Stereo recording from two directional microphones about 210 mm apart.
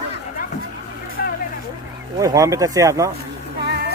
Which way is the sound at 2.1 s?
15° right (ahead or behind).